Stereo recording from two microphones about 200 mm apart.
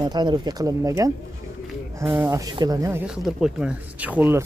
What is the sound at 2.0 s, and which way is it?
Speech, 5° right (ahead or behind).